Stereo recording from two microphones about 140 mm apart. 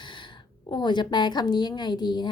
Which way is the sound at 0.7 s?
30° left (ahead or behind).